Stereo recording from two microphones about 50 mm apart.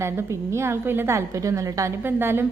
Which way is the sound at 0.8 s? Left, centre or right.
Right.